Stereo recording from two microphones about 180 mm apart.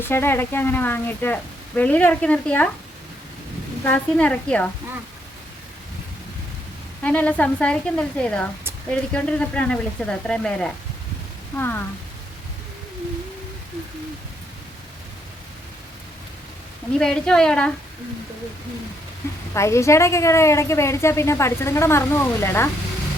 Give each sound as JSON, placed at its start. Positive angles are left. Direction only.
{"t": 0.0, "sound": "a woman's voice", "side_deg": 15}
{"t": 3.8, "sound": "a woman's voice", "side_deg": 10}
{"t": 7.0, "sound": "a woman's voice", "side_deg": 10}
{"t": 17.0, "sound": "a woman's voice", "side_deg": 5}
{"t": 19.5, "sound": "a woman's voice", "side_deg": 15}